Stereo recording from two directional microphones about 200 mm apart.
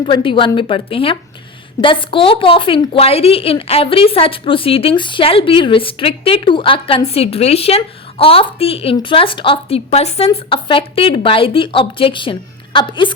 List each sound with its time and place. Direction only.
0.1 s a woman's voice: 25° left (ahead or behind)